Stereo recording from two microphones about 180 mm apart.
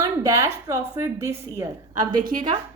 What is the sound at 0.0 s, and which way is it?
A woman's voice, 20° right (ahead or behind).